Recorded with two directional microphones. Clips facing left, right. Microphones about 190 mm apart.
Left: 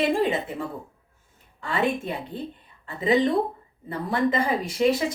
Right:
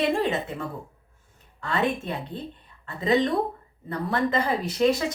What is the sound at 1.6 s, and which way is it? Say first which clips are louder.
Speech: left 1 dB; 15° left (ahead or behind).